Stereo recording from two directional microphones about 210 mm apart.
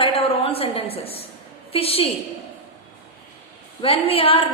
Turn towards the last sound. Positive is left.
turn(degrees=25)  # may be behind; listen again after turning